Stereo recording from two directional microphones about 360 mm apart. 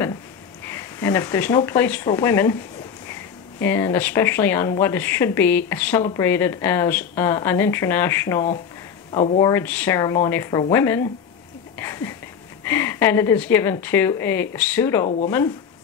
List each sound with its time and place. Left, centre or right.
0.7 s speech: centre
3.6 s speech: centre
15.0 s speech: centre